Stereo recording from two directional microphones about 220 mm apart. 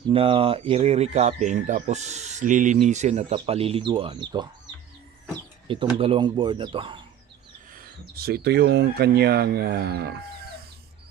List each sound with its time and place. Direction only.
0.1 s speech: 25° right (ahead or behind)
5.6 s speech: 20° right (ahead or behind)
7.8 s speech: 45° right (ahead or behind)